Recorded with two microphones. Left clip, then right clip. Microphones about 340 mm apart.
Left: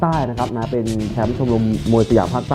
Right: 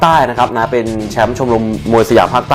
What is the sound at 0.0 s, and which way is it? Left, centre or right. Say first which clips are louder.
Speech: right 11 dB; centre.